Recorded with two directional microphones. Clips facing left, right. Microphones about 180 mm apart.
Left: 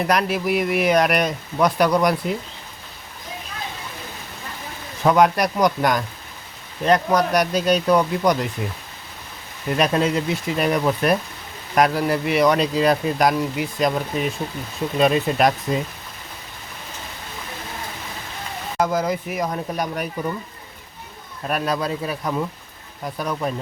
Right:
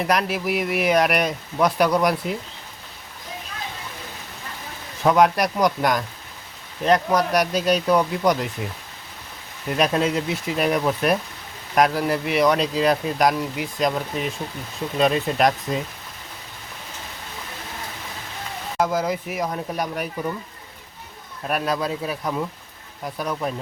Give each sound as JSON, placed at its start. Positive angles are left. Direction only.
{"t": 0.0, "sound": "speech", "side_deg": 0}
{"t": 5.0, "sound": "speech", "side_deg": 0}
{"t": 9.6, "sound": "speech", "side_deg": 0}
{"t": 18.8, "sound": "speech", "side_deg": 0}
{"t": 21.4, "sound": "speech", "side_deg": 0}